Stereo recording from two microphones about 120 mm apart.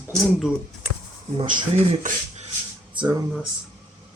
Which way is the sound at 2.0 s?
90° right.